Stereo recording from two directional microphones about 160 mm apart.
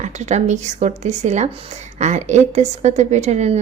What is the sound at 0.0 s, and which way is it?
A woman's voice, 45° right (ahead or behind).